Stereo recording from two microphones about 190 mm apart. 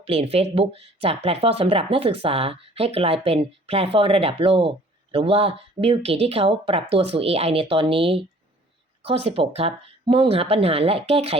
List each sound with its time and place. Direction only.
0.0 s speech: 30° right (ahead or behind)